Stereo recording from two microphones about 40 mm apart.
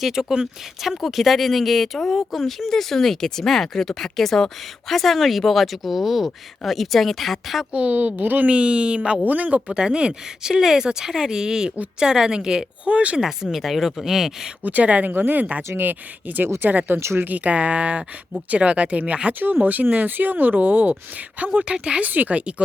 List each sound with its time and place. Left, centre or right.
0.0 s speech: centre
7.7 s speech: right
8.4 s speech: right
9.2 s speech: right
9.6 s speech: right
12.8 s speech: right
13.1 s speech: centre
14.6 s speech: right
15.1 s speech: right
17.2 s speech: right
19.3 s speech: right
21.3 s speech: right
21.6 s speech: right
22.0 s speech: right